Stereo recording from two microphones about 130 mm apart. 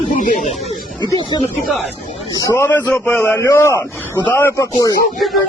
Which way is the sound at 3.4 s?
25° left (ahead or behind).